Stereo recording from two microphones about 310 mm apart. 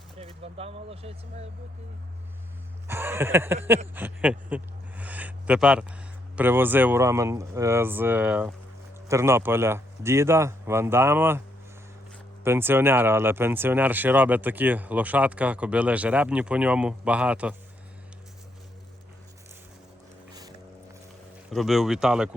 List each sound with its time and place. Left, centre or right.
0.2 s speech: centre
2.8 s speech: centre
12.5 s speech: centre
21.5 s speech: centre